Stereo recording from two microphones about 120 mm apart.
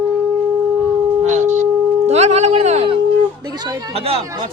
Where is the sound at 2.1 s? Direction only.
65° right (ahead or behind).